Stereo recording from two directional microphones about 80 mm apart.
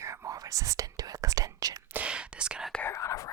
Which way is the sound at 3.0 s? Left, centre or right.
Left.